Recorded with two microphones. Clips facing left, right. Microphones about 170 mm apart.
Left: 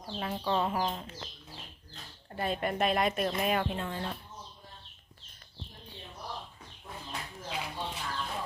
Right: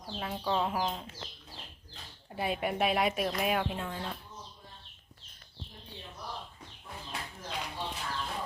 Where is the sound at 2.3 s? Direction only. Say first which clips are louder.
Even; 10° right (ahead or behind).